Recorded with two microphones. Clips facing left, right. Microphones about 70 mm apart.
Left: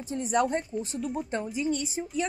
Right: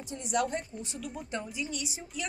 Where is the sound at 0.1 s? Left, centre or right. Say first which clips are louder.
Left 5 dB; left.